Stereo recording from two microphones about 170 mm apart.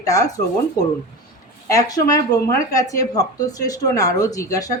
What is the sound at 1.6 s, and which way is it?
A woman's voice, 20° left (ahead or behind).